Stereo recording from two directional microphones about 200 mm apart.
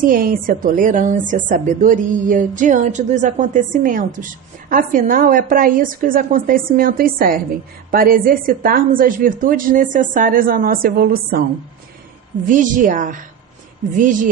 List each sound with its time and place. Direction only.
0.0 s a woman's voice: 45° right (ahead or behind)
12.5 s a woman's voice: 40° right (ahead or behind)